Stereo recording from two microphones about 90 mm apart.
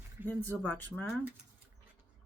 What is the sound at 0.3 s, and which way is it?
Speech, 20° left (ahead or behind).